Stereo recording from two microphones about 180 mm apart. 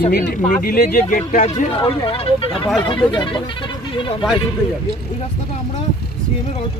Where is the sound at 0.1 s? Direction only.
65° left (ahead or behind).